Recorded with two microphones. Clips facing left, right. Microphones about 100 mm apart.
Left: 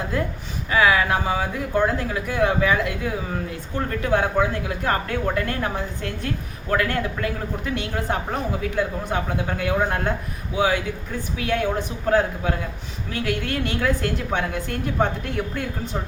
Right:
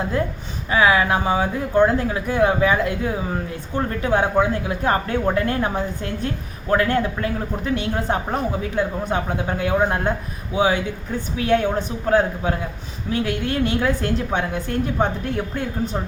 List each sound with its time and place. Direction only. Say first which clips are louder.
0.7 s speech: right 2 dB; 25° right (ahead or behind)